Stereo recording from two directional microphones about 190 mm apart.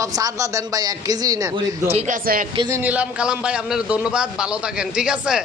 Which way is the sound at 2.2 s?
50° right (ahead or behind).